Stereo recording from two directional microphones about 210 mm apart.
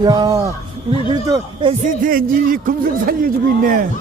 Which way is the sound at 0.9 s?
25° right (ahead or behind).